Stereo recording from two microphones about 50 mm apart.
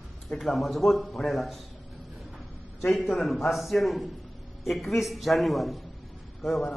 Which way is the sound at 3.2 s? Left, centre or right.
Centre.